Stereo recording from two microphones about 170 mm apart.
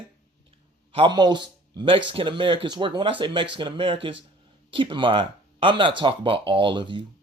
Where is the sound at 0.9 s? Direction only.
25° right (ahead or behind).